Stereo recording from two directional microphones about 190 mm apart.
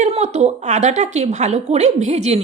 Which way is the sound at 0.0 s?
35° right (ahead or behind).